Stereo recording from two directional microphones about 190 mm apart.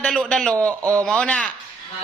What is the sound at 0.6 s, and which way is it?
Speech, 15° right (ahead or behind).